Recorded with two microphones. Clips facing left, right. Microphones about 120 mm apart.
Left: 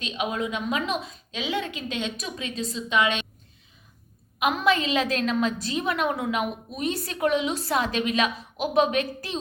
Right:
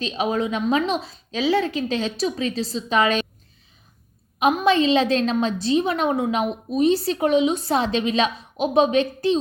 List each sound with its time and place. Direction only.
0.0 s a woman's voice: 35° right (ahead or behind)
4.6 s a woman's voice: 25° right (ahead or behind)